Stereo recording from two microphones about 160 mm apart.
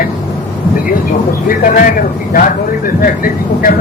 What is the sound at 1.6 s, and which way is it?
Speech, 60° left (ahead or behind).